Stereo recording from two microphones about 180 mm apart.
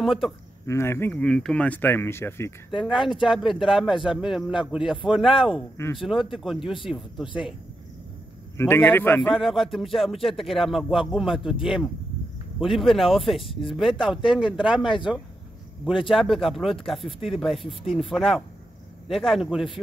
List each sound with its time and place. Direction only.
0.0 s speech: centre (ahead or behind)
0.7 s speech: 15° left (ahead or behind)
2.7 s speech: centre (ahead or behind)
6.6 s speech: 30° left (ahead or behind)
6.9 s speech: centre (ahead or behind)
8.5 s speech: 10° left (ahead or behind)
9.3 s speech: centre (ahead or behind)
16.1 s speech: centre (ahead or behind)